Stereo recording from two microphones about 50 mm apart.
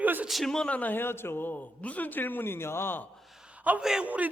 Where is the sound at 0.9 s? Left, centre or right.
Left.